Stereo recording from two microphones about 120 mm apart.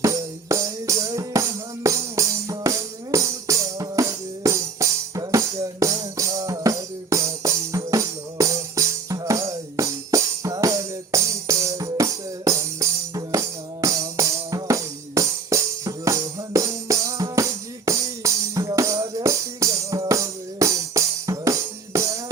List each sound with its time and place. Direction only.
0.0 s music: 25° right (ahead or behind)